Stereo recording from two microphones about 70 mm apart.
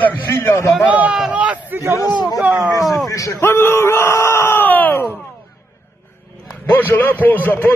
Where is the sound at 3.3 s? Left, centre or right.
Left.